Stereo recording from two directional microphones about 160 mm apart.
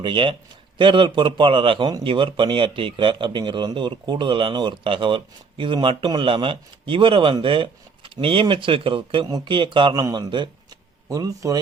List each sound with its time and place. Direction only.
0.0 s a man's voice: 30° right (ahead or behind)